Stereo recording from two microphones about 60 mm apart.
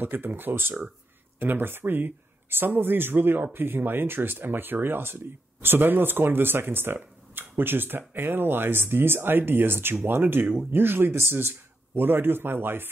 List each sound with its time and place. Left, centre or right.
0.0 s speech: right